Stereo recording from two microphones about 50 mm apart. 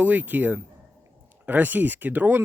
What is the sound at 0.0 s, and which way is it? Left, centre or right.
Speech, right.